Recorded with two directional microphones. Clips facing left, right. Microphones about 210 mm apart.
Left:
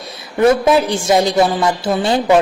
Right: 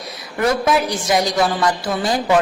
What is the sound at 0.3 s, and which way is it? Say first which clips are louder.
A woman's voice: left 6 dB; 25° left (ahead or behind).